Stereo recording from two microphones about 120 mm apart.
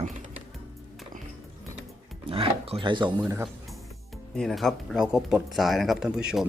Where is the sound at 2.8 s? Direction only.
40° right (ahead or behind).